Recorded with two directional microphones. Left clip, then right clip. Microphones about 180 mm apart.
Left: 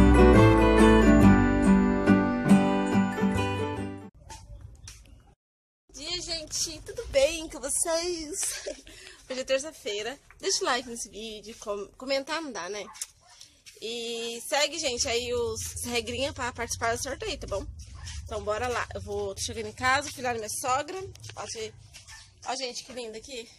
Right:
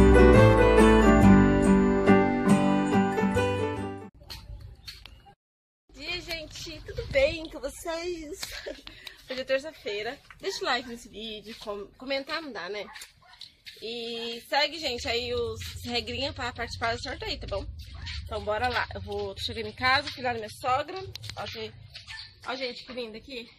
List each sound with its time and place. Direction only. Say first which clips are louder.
0.0 s music: right 1 dB; centre (ahead or behind)
5.9 s a sound: left 1 dB; 10° left (ahead or behind)
9.3 s a woman's voice: even; 15° left (ahead or behind)